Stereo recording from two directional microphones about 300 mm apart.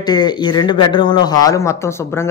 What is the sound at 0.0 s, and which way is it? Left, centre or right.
Speech, centre.